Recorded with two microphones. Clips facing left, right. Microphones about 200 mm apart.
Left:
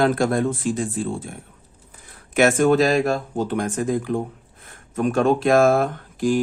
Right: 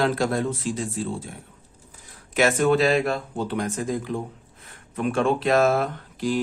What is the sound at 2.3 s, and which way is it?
Speech, 50° left (ahead or behind).